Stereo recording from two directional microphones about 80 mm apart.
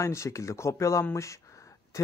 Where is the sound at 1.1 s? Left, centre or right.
Left.